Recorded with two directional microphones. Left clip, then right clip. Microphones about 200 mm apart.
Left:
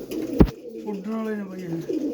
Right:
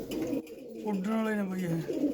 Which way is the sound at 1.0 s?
50° right (ahead or behind).